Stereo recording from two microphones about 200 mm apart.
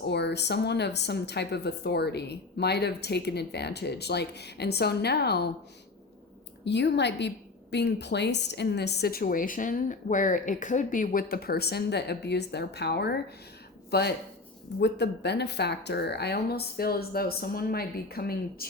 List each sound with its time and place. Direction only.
0.1 s a woman's voice: 55° left (ahead or behind)
6.7 s a woman's voice: 60° left (ahead or behind)
14.8 s speech: 60° left (ahead or behind)